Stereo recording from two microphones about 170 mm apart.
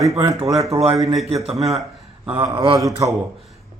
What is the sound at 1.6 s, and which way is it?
Speech, centre (ahead or behind).